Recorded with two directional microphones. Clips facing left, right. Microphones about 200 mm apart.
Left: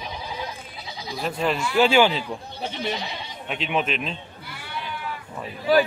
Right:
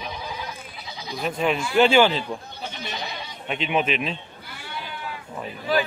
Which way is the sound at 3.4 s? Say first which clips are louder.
Right 2 dB; centre (ahead or behind).